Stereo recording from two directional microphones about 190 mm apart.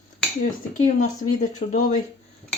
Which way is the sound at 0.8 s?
40° left (ahead or behind).